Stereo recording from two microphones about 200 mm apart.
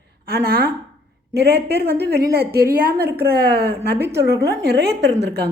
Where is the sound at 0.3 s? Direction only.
50° right (ahead or behind).